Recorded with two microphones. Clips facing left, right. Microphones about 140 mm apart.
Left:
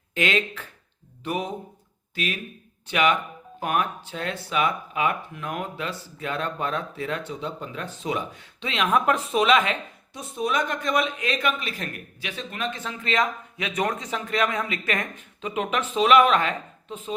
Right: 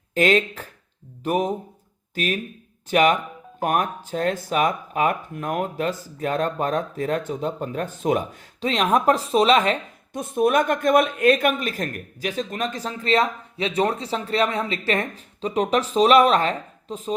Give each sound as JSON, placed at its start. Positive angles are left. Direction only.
{"t": 0.1, "sound": "speech", "side_deg": -40}
{"t": 10.1, "sound": "speech", "side_deg": -50}